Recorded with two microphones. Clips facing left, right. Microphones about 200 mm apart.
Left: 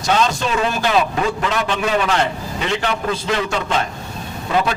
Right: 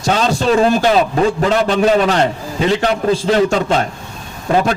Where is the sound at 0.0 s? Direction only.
35° right (ahead or behind).